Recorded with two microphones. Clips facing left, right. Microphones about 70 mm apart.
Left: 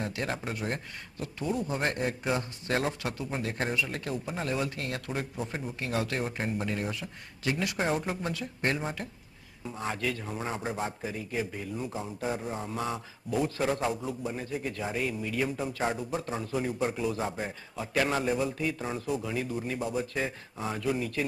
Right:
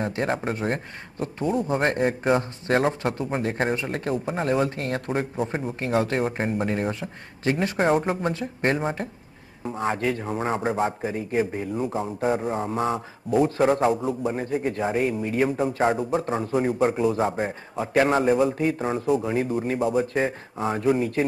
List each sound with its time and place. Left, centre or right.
0.0 s a man's voice: right